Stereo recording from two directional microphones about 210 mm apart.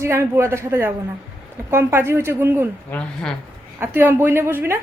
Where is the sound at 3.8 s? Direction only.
10° right (ahead or behind).